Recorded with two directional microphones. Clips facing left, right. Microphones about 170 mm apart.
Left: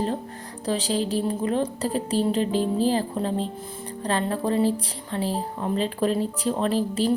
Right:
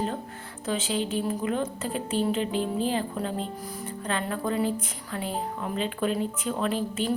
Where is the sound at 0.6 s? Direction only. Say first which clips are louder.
Left 3 dB; 35° left (ahead or behind).